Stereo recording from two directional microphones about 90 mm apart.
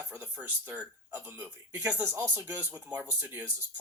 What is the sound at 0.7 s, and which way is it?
Speech, 20° right (ahead or behind).